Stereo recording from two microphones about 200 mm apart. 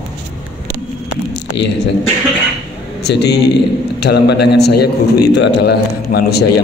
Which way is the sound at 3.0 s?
55° left (ahead or behind).